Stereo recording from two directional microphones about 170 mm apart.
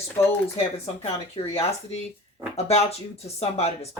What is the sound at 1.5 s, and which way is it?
Speech, 35° left (ahead or behind).